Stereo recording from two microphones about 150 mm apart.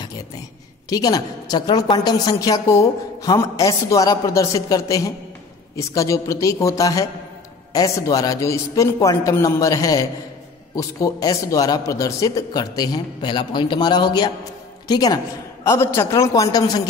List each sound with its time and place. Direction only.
0.8 s a woman's voice: 25° left (ahead or behind)